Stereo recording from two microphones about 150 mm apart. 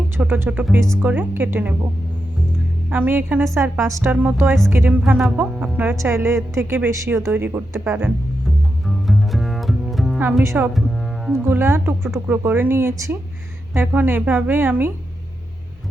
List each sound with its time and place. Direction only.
0.2 s speech: 15° right (ahead or behind)
2.9 s speech: 10° right (ahead or behind)
9.0 s double bass: centre (ahead or behind)
10.4 s speech: 20° right (ahead or behind)